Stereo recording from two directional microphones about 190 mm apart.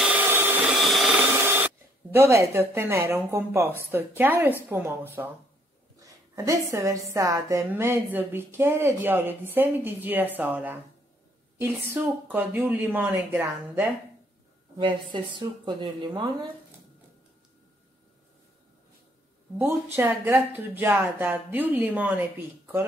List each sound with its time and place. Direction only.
0.0 s vacuum cleaner: 10° right (ahead or behind)
0.8 s a sound: centre (ahead or behind)
1.4 s rub: 10° right (ahead or behind)
2.1 s a woman's voice: 15° right (ahead or behind)
14.8 s a woman's voice: 25° right (ahead or behind)
19.6 s a woman's voice: 15° right (ahead or behind)